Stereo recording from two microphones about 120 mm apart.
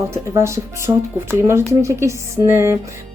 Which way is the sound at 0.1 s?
25° right (ahead or behind).